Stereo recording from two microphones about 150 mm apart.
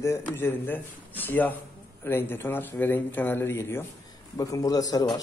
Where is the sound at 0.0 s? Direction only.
15° left (ahead or behind).